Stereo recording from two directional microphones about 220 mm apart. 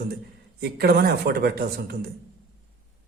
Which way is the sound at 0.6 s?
45° right (ahead or behind).